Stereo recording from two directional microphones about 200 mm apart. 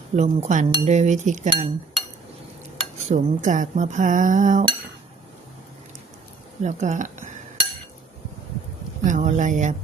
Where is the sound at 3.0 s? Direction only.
40° right (ahead or behind).